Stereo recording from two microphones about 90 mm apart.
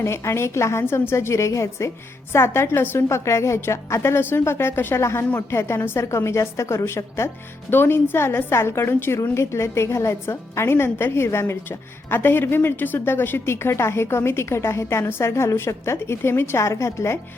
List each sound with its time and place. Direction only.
0.0 s a woman's voice: 30° left (ahead or behind)